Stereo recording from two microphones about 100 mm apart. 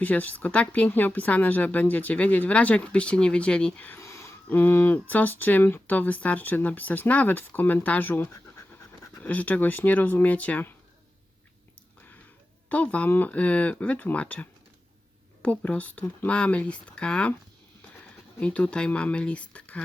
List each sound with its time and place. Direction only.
0.0 s a woman's voice: 15° left (ahead or behind)
4.0 s a sound: 30° left (ahead or behind)
4.4 s a woman's voice: 20° left (ahead or behind)
12.6 s a woman's voice: 15° left (ahead or behind)
18.3 s a woman's voice: 10° left (ahead or behind)